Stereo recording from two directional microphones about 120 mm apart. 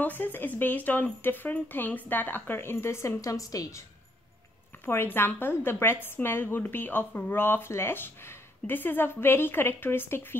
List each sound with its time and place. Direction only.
0.0 s a woman's voice: 15° left (ahead or behind)
4.8 s a woman's voice: 20° left (ahead or behind)